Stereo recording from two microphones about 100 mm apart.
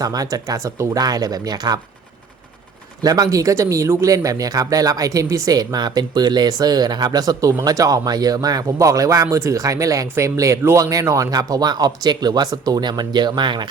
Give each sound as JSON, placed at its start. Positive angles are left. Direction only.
{"t": 0.0, "sound": "speech", "side_deg": -40}
{"t": 3.0, "sound": "speech", "side_deg": -40}